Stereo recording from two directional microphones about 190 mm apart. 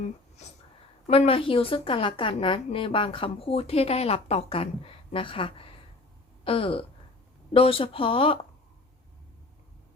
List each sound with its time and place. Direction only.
1.0 s a woman's voice: 35° left (ahead or behind)
6.4 s a sound: 30° left (ahead or behind)
7.5 s a woman's voice: 30° left (ahead or behind)